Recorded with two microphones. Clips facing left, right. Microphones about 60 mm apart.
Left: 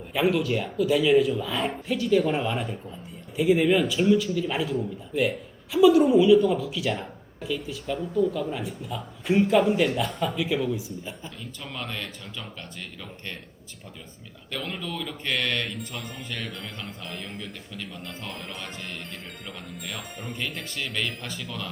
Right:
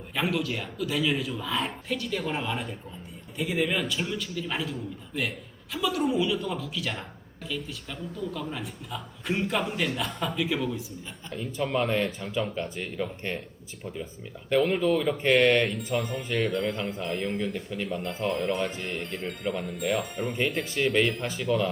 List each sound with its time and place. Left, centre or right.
0.1 s a man's voice: centre
11.7 s speech: right
14.5 s speech: right
15.8 s a man's voice: centre
20.7 s speech: centre
21.0 s a man's voice: centre